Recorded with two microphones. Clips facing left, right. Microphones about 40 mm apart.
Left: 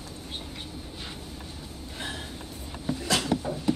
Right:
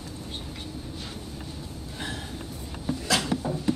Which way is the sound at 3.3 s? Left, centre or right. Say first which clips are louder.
Even; centre.